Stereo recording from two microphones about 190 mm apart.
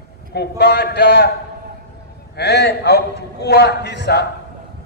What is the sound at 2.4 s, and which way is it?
A man's voice, 60° left (ahead or behind).